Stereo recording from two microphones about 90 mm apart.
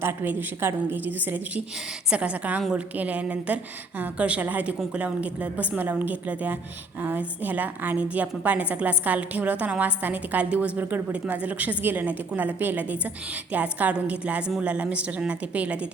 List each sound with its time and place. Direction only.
0.0 s a woman's voice: 25° right (ahead or behind); by 2.8 s 5° right (ahead or behind)
2.9 s a woman's voice: 15° right (ahead or behind)